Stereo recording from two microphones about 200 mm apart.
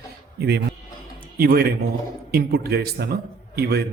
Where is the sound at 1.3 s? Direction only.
50° right (ahead or behind).